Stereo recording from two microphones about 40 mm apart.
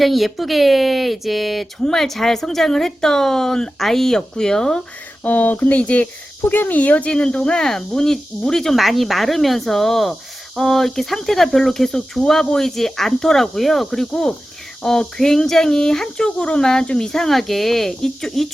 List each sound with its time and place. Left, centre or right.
0.0 s speech: centre
5.2 s speech: left
6.4 s speech: left
6.7 s speech: left
7.1 s speech: left
8.7 s speech: centre
14.1 s speech: centre